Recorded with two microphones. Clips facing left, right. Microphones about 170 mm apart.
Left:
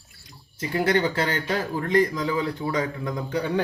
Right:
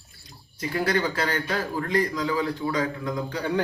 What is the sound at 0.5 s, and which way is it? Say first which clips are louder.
A man's voice: left 2 dB; 25° left (ahead or behind).